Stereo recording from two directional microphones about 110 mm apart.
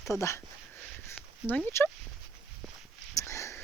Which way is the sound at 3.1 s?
30° left (ahead or behind).